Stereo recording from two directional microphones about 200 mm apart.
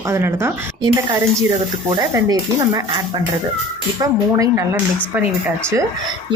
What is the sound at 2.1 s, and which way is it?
A woman's voice, 15° right (ahead or behind).